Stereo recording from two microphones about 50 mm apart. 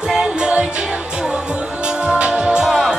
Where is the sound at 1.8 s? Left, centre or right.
Centre.